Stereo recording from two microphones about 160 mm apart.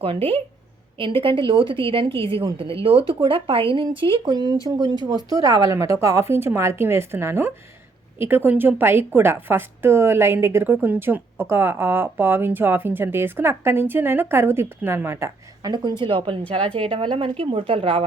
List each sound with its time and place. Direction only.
0.0 s a woman's voice: 35° right (ahead or behind); by 15.7 s 15° right (ahead or behind)
15.7 s a woman's voice: 30° right (ahead or behind)